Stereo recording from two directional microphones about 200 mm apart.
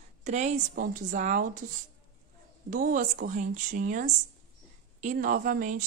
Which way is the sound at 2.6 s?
40° right (ahead or behind).